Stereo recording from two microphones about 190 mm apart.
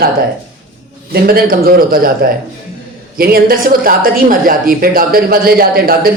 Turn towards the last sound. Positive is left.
turn(degrees=-50)  # may be behind; listen again after turning